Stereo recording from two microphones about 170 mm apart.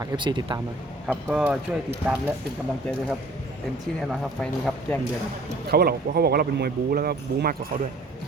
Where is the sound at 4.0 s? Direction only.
Centre (ahead or behind).